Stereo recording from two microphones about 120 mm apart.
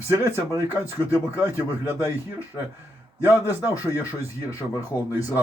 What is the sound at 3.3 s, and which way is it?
Speech, 20° right (ahead or behind).